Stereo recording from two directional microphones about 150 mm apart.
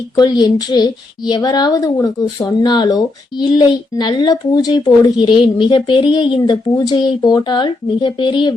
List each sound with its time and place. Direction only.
0.2 s a woman's voice: 25° left (ahead or behind)